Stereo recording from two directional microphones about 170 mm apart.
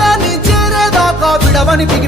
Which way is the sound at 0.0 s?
Centre (ahead or behind).